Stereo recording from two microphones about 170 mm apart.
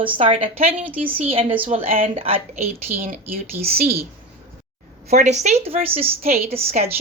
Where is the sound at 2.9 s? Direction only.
55° right (ahead or behind).